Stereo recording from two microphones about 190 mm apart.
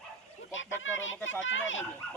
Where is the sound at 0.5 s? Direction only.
90° left.